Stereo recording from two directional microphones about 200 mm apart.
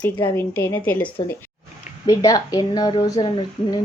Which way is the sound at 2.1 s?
20° left (ahead or behind).